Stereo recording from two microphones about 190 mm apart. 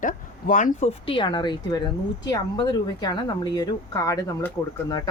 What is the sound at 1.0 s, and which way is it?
Speech, 25° left (ahead or behind).